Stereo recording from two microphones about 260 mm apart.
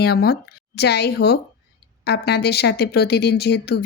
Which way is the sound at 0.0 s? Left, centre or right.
Left.